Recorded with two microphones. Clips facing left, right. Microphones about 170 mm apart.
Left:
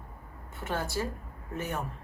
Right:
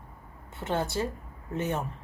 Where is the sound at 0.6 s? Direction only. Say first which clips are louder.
Right 3 dB; 20° right (ahead or behind).